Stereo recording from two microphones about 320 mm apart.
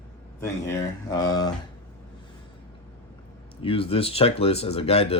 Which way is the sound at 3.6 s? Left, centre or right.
Centre.